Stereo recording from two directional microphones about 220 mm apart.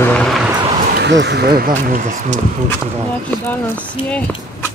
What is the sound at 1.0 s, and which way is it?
Speech, 50° right (ahead or behind).